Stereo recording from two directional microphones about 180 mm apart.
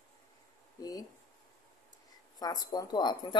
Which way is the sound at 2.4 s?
20° left (ahead or behind).